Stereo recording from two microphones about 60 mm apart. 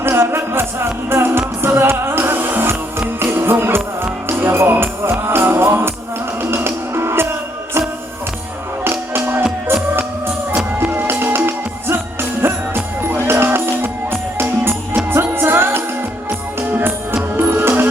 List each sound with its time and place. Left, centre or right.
0.0 s music: right